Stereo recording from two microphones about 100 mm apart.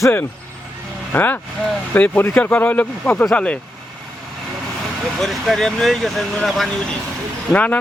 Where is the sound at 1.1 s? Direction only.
20° left (ahead or behind).